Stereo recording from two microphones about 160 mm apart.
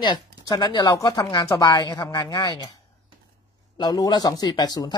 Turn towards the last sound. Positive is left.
turn(degrees=25)  # may be behind; listen again after turning